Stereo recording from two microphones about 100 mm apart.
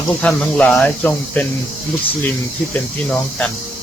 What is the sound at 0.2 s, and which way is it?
Speech, 15° left (ahead or behind).